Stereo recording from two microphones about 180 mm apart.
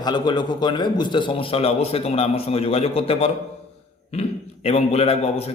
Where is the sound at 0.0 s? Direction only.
25° left (ahead or behind).